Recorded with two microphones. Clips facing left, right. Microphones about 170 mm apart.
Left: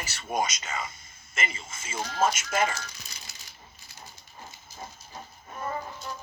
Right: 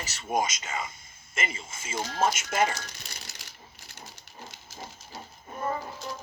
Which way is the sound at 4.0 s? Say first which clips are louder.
Right 1 dB; 75° right (ahead or behind).